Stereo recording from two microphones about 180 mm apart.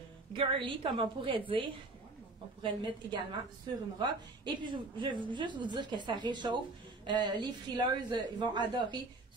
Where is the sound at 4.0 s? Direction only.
25° right (ahead or behind).